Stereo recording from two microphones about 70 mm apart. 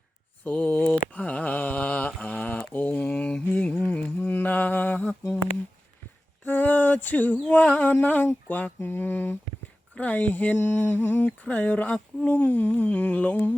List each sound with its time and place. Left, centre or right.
0.4 s mantra: left
6.4 s a sound: left
7.5 s music: left
8.4 s speech: left
8.8 s mantra: left
9.9 s a sound: left
12.2 s humming: centre